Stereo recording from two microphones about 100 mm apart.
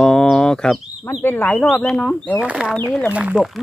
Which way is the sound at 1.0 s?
20° left (ahead or behind).